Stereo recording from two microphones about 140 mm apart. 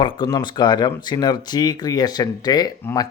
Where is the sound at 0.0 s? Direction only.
30° left (ahead or behind).